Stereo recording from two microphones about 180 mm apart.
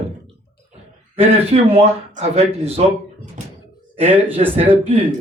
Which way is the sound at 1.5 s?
35° right (ahead or behind).